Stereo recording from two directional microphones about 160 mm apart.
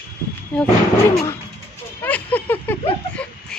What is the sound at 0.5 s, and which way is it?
Speech, 5° left (ahead or behind).